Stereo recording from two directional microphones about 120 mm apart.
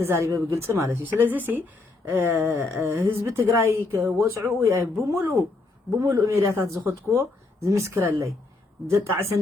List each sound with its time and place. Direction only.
0.0 s speech: 20° right (ahead or behind)